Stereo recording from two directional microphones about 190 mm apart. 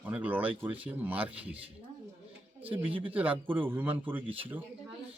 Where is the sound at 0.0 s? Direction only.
10° right (ahead or behind).